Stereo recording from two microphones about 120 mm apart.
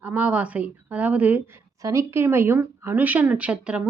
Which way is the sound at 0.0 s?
10° right (ahead or behind).